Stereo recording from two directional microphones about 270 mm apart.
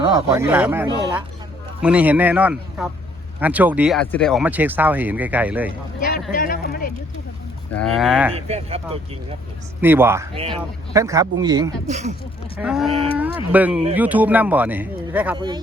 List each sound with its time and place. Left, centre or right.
0.0 s speech: centre
6.3 s speech: left
7.7 s speech: centre
8.3 s speech: right
9.8 s speech: centre
11.9 s speech: right
12.5 s speech: centre
12.9 s speech: right
13.1 s speech: centre
15.4 s speech: centre